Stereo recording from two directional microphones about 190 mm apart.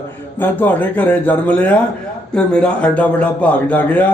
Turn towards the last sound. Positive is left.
turn(degrees=10)  # may be behind; listen again after turning